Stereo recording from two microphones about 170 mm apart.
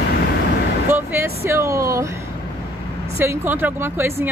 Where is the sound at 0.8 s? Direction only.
15° right (ahead or behind).